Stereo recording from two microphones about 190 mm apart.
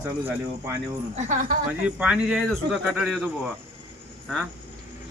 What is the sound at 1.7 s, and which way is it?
Speech, 5° right (ahead or behind).